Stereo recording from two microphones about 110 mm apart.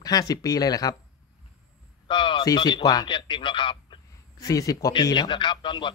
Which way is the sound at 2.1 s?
45° left (ahead or behind).